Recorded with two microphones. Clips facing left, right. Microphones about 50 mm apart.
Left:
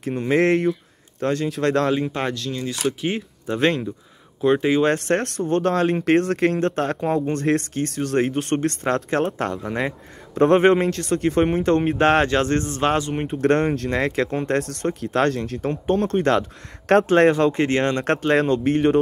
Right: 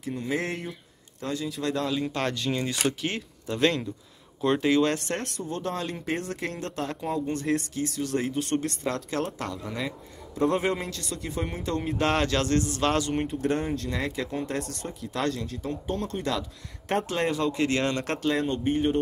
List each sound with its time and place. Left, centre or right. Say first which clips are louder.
0.0 s speech: left 10 dB; left
2.3 s speech: left 1 dB; centre
2.7 s speech: left 3 dB; centre
3.4 s speech: left 4 dB; left
5.1 s speech: left 11 dB; left
12.0 s speech: left 4 dB; left
13.0 s speech: left 2 dB; centre
13.4 s speech: left 8 dB; left
17.6 s speech: left 6 dB; left
18.3 s speech: left 8 dB; left